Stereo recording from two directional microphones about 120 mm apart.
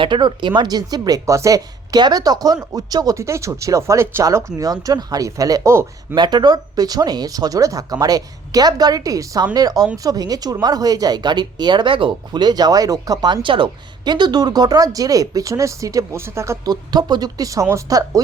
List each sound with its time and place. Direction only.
0.0 s speech: 40° right (ahead or behind); by 6.1 s 20° right (ahead or behind)
6.1 s speech: 35° right (ahead or behind)
16.9 s speech: 35° right (ahead or behind)